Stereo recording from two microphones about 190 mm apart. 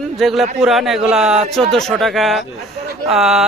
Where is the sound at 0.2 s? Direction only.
Centre (ahead or behind).